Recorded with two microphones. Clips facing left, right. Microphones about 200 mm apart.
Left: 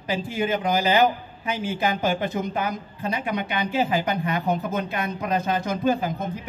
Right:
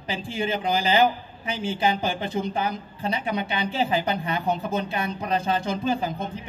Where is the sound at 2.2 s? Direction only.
30° right (ahead or behind).